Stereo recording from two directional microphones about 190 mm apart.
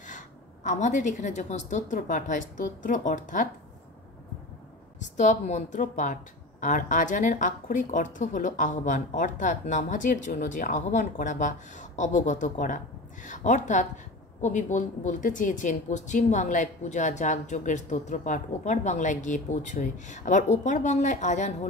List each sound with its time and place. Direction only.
0.7 s a woman's voice: 40° left (ahead or behind)
4.9 s a woman's voice: 40° left (ahead or behind)